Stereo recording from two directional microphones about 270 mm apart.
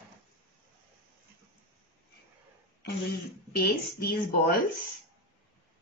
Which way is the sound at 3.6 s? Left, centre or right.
Left.